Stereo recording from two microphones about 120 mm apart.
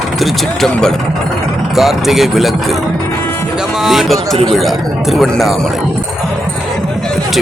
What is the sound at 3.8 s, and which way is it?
Speech, centre (ahead or behind).